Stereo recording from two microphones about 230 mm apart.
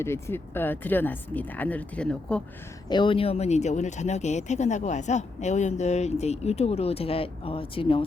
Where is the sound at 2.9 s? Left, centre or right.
Left.